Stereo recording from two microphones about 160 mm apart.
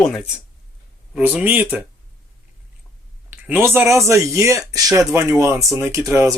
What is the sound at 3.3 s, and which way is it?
Speech, 10° right (ahead or behind).